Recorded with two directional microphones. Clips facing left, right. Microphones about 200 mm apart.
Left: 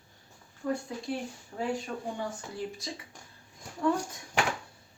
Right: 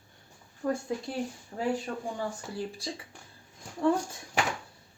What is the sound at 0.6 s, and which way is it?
Speech, 50° right (ahead or behind).